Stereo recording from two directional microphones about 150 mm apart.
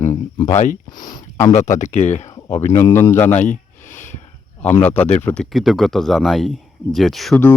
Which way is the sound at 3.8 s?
55° left (ahead or behind).